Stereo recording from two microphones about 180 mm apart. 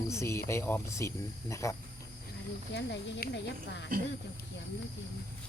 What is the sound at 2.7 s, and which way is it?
Speech, 75° left (ahead or behind).